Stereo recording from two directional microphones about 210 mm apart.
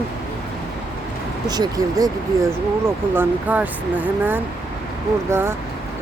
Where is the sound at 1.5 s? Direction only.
20° right (ahead or behind).